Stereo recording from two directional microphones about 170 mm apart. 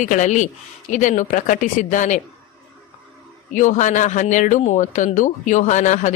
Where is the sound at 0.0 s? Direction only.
45° left (ahead or behind).